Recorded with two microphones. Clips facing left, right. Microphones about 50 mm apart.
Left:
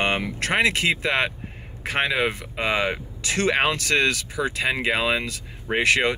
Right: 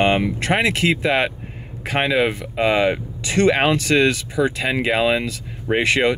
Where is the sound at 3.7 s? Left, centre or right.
Centre.